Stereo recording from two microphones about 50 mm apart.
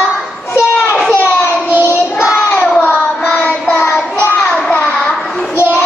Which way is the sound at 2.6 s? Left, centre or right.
Left.